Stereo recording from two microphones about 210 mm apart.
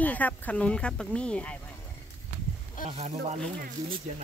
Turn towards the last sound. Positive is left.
turn(degrees=-30)  # may be behind; listen again after turning